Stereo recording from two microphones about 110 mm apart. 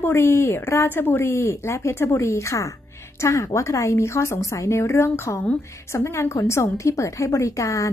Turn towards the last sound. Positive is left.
turn(degrees=30)  # may be behind; listen again after turning